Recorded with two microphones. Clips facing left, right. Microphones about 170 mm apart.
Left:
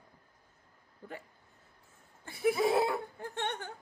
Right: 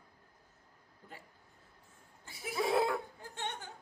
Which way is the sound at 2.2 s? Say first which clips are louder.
Left 16 dB; 55° left (ahead or behind).